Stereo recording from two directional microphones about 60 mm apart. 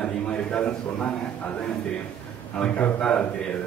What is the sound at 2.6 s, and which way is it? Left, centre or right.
Speech, left.